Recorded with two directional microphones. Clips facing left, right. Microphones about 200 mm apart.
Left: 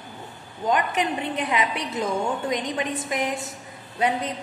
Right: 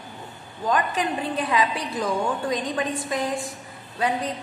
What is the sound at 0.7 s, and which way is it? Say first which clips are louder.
A woman's voice: left 1 dB; 20° left (ahead or behind).